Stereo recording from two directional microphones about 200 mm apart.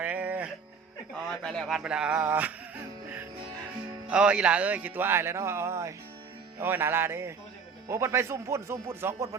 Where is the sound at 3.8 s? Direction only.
5° right (ahead or behind).